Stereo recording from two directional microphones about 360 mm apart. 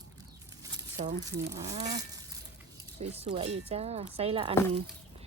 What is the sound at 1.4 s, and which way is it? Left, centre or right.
Livestock, centre.